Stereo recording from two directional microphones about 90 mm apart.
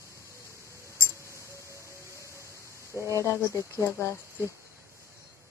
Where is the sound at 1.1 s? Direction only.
35° left (ahead or behind).